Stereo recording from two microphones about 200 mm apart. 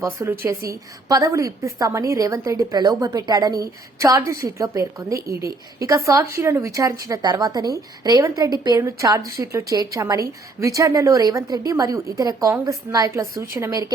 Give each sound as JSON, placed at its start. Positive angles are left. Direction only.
{"t": 0.0, "sound": "a woman's voice", "side_deg": -15}